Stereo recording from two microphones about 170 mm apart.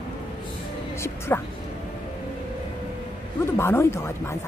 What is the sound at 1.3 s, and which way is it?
Speech, 15° left (ahead or behind).